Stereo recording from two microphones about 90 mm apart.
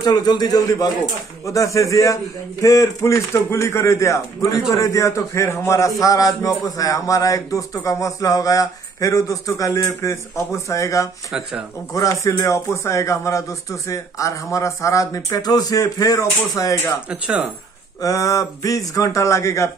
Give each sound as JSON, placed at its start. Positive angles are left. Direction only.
{"t": 0.0, "sound": "a man's voice", "side_deg": 50}
{"t": 17.1, "sound": "speech", "side_deg": -10}
{"t": 18.0, "sound": "speech", "side_deg": 40}